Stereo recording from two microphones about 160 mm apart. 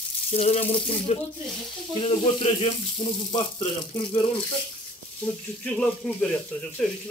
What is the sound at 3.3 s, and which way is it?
Speech, 45° left (ahead or behind).